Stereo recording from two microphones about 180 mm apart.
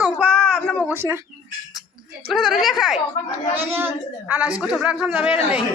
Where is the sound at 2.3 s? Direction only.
Centre (ahead or behind).